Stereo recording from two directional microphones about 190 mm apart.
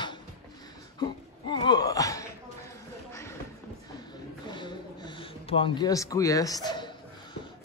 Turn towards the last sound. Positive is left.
turn(degrees=25)  # may be behind; listen again after turning